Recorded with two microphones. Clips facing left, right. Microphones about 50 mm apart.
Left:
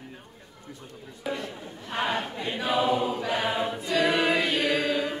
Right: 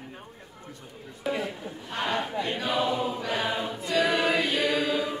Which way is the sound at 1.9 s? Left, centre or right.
Centre.